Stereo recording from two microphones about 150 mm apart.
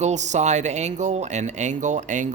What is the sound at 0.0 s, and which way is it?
Speech, 50° right (ahead or behind).